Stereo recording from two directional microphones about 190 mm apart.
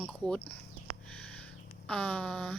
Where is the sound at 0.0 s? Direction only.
5° left (ahead or behind).